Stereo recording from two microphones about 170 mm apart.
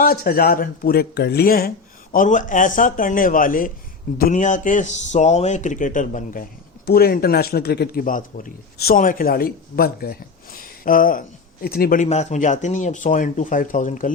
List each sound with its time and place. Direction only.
0.0 s speech: 60° left (ahead or behind)
2.1 s speech: 50° left (ahead or behind)
12.0 s speech: 40° left (ahead or behind)